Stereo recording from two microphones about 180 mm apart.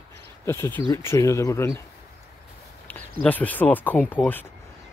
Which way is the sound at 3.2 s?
10° left (ahead or behind).